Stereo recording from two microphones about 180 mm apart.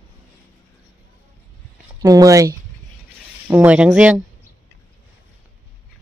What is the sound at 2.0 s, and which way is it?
Speech, 20° right (ahead or behind).